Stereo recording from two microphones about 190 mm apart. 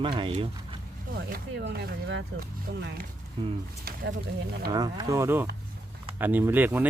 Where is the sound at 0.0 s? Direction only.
25° right (ahead or behind).